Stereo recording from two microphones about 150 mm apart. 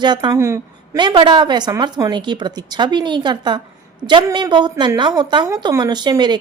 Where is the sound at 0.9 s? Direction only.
30° right (ahead or behind).